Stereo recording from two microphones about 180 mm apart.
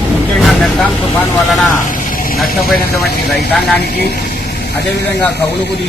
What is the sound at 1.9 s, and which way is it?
Vehicle, 50° left (ahead or behind).